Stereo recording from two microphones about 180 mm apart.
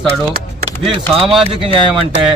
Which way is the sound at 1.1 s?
Centre (ahead or behind).